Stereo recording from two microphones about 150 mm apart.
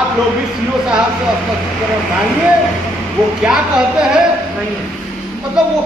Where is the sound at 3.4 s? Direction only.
5° right (ahead or behind).